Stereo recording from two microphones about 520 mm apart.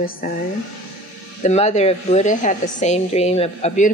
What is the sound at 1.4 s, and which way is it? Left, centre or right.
A woman's voice, centre.